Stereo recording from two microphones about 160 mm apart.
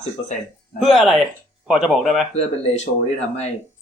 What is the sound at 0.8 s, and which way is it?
Speech, centre (ahead or behind).